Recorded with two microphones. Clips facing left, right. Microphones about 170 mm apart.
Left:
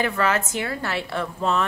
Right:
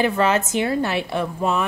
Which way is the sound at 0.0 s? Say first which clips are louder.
Right 4 dB; 20° right (ahead or behind).